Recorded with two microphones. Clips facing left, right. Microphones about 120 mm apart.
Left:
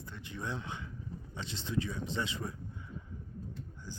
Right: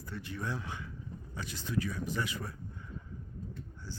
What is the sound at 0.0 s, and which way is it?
Speech, 20° left (ahead or behind).